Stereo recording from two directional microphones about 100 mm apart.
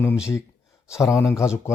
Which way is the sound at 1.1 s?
30° left (ahead or behind).